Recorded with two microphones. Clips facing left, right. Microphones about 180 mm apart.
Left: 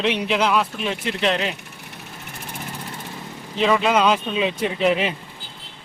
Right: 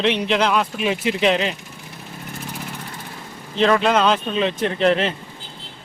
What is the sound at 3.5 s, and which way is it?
Speech, 5° left (ahead or behind).